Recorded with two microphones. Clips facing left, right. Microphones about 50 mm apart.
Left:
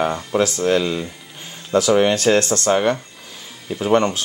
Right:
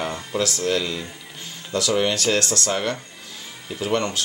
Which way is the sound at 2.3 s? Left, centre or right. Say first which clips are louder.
Left 6 dB; centre.